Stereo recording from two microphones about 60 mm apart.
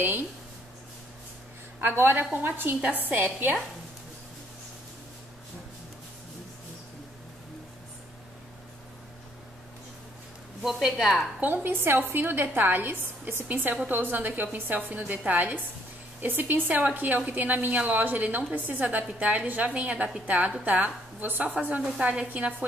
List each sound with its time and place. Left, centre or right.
0.0 s a woman's voice: right
1.8 s a woman's voice: right
10.6 s a woman's voice: centre
11.3 s a woman's voice: right